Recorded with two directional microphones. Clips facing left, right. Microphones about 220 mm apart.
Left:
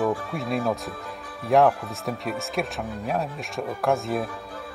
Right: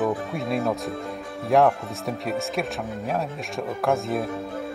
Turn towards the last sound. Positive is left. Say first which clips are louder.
# right 1 dB
turn(degrees=0)  # may be behind; listen again after turning